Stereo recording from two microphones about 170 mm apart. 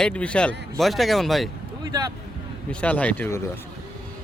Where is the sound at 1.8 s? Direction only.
25° right (ahead or behind).